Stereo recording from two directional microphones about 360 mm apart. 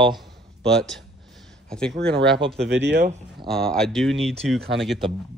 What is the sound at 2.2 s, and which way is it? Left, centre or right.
Speech, right.